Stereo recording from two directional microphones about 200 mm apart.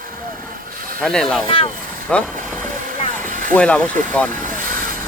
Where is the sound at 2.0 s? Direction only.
5° left (ahead or behind).